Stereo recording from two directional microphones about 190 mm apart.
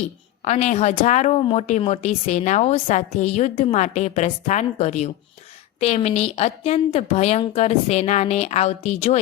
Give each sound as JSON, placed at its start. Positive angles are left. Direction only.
{"t": 0.4, "sound": "a woman's voice", "side_deg": 35}